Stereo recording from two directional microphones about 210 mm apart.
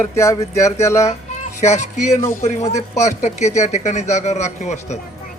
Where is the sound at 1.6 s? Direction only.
35° left (ahead or behind).